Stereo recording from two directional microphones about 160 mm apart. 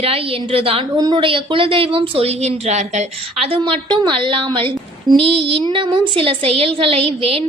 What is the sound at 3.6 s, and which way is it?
A woman's voice, 30° right (ahead or behind).